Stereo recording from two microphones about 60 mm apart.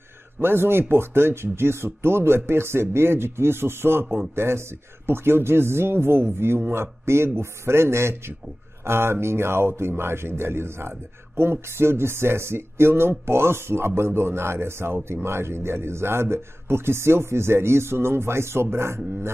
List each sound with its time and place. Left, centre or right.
0.4 s speech: right